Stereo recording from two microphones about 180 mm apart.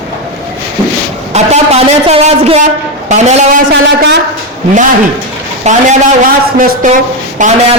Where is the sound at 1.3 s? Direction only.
35° right (ahead or behind).